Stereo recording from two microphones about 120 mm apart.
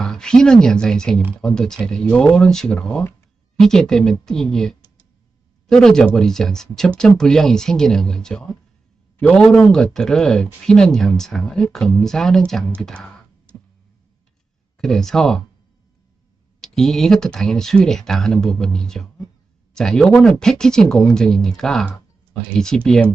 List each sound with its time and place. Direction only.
0.0 s speech: 5° left (ahead or behind)
14.8 s speech: 5° left (ahead or behind)
16.6 s speech: 5° left (ahead or behind)